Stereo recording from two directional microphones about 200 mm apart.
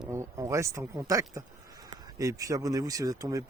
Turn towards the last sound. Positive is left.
turn(degrees=-15)  # may be behind; listen again after turning